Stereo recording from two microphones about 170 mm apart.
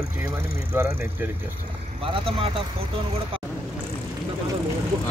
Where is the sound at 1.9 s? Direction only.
30° right (ahead or behind).